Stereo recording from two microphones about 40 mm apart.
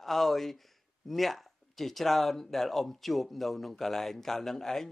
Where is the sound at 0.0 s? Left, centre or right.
Centre.